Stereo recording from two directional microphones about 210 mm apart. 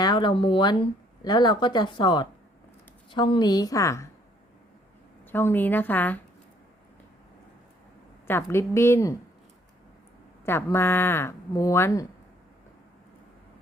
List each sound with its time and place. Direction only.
0.0 s speech: 20° left (ahead or behind)
5.2 s speech: 10° left (ahead or behind)
8.3 s speech: 10° left (ahead or behind)
10.4 s speech: 10° left (ahead or behind)